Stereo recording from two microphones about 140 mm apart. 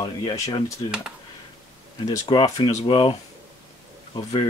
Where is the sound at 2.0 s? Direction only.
30° left (ahead or behind).